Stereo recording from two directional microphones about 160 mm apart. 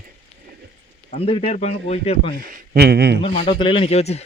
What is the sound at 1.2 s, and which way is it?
Speech, 35° left (ahead or behind).